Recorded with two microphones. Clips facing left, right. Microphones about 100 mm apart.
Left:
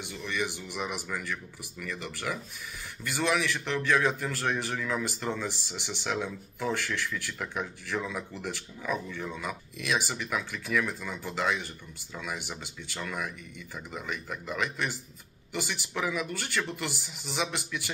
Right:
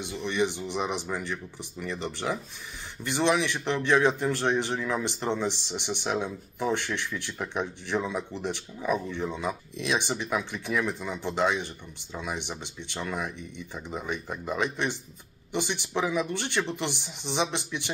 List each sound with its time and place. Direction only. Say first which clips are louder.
0.0 s a man's voice: right 6 dB; 20° right (ahead or behind)